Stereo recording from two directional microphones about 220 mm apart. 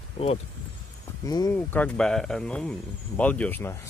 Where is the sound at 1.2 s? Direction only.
15° left (ahead or behind).